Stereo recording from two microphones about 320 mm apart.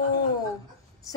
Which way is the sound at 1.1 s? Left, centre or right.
Centre.